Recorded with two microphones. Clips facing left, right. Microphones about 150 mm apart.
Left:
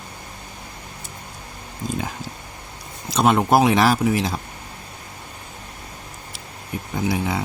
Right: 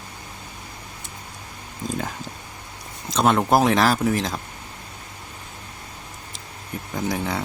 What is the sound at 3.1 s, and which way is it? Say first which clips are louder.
Speech: left 1 dB; 5° left (ahead or behind).